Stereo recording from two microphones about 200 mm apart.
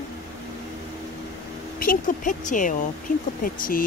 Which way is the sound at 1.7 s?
45° left (ahead or behind).